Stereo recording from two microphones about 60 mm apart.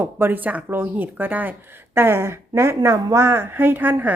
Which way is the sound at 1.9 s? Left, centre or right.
Right.